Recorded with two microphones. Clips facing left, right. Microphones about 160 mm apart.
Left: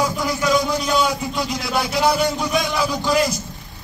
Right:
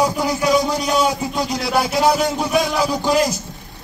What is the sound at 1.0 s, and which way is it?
Speech, 30° right (ahead or behind).